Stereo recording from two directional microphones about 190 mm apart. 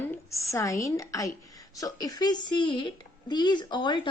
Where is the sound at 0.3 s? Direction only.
15° left (ahead or behind).